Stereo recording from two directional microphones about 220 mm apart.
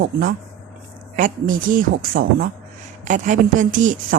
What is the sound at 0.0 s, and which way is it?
A woman's voice, 45° right (ahead or behind).